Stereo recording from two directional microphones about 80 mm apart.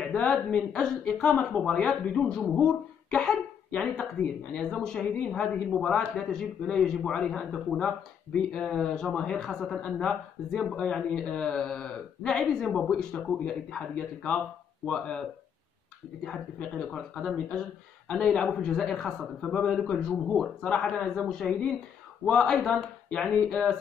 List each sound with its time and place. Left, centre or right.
0.0 s a man's voice: centre
2.4 s a man's voice: centre
16.5 s a man's voice: centre